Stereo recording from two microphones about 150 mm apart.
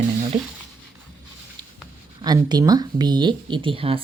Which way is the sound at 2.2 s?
25° right (ahead or behind).